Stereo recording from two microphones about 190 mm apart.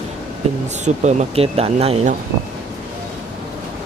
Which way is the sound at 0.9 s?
40° right (ahead or behind).